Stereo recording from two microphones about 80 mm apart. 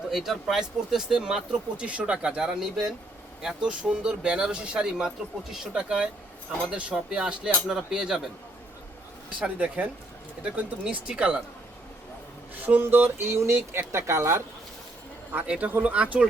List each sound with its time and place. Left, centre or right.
0.1 s speech: centre
9.4 s speech: centre
12.6 s speech: right
15.3 s speech: centre